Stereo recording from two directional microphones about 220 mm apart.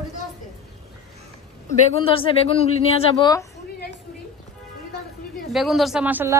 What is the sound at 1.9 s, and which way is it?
Speech, 25° left (ahead or behind).